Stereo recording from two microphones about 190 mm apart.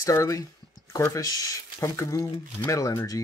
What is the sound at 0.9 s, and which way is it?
Speech, 15° left (ahead or behind).